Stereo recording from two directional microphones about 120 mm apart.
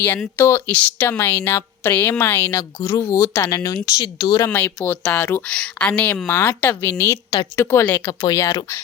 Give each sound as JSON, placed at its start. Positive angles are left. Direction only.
{"t": 0.3, "sound": "a woman's voice", "side_deg": 25}
{"t": 0.7, "sound": "a woman's voice", "side_deg": 15}
{"t": 4.4, "sound": "a woman's voice", "side_deg": 15}
{"t": 8.2, "sound": "a woman's voice", "side_deg": 30}